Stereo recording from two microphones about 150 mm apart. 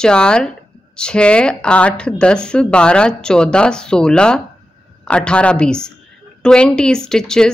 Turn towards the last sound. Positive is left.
turn(degrees=5)  # may be behind; listen again after turning